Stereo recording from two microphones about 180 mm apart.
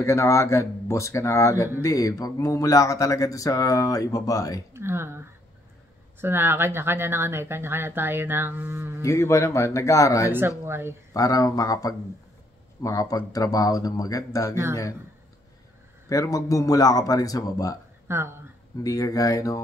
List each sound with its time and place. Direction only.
0.0 s speech: 15° left (ahead or behind)
4.7 s speech: 15° right (ahead or behind)
9.0 s speech: 15° left (ahead or behind)
10.6 s speech: 15° right (ahead or behind)
11.1 s speech: 20° left (ahead or behind)
16.1 s speech: 20° left (ahead or behind)
18.0 s speech: 15° right (ahead or behind)
18.8 s speech: 20° left (ahead or behind)